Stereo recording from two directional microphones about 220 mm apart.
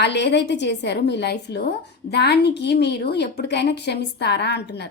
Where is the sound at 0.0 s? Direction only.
50° left (ahead or behind).